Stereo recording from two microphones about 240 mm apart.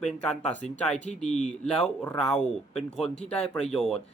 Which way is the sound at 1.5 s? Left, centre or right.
Centre.